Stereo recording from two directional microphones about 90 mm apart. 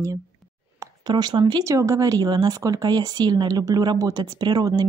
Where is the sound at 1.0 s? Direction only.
50° right (ahead or behind).